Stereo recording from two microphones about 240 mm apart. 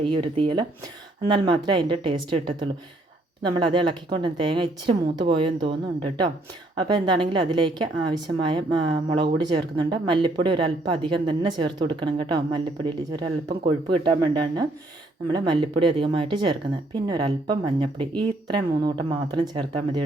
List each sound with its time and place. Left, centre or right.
0.0 s speech: right